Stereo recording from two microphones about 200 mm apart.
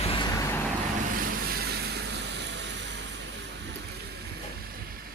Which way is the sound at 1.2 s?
50° right (ahead or behind).